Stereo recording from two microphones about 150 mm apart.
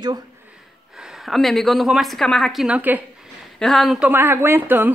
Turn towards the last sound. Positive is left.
turn(degrees=-10)  # may be behind; listen again after turning